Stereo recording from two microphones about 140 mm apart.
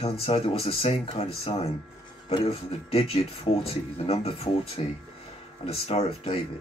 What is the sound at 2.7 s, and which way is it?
Speech, 45° left (ahead or behind).